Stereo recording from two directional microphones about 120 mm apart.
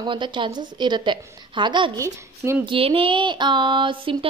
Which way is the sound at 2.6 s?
50° right (ahead or behind).